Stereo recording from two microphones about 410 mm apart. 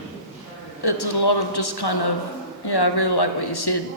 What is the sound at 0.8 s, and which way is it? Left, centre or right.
Speech, left.